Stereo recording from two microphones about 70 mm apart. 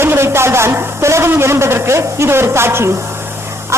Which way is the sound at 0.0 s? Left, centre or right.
Right.